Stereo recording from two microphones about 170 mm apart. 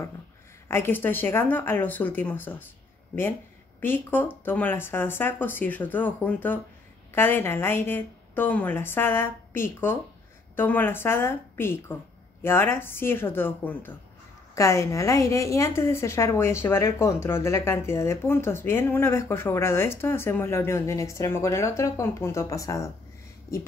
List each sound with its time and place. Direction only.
0.7 s a woman's voice: 15° left (ahead or behind)
3.8 s a woman's voice: 10° left (ahead or behind)